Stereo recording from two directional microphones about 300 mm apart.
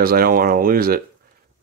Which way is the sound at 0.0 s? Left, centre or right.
Right.